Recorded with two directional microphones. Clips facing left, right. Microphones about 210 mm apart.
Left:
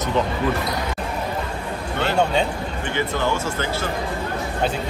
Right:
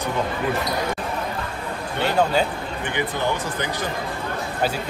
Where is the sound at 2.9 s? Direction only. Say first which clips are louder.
Left 2 dB; 15° right (ahead or behind).